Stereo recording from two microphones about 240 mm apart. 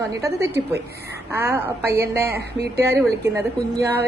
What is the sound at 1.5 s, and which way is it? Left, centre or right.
A woman's voice, right.